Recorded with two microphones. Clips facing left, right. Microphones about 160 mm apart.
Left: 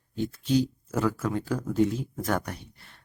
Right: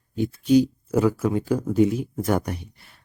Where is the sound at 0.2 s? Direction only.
15° right (ahead or behind).